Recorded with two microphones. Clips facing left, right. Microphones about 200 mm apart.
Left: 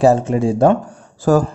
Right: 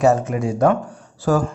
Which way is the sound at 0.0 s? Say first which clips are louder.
Left 4 dB; 30° left (ahead or behind).